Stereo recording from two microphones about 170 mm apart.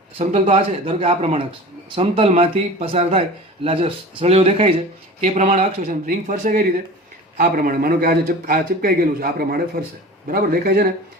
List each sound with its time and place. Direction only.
0.2 s a man's voice: 40° right (ahead or behind); by 10.8 s 60° right (ahead or behind)